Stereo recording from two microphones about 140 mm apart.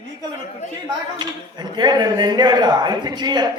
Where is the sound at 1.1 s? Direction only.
30° right (ahead or behind).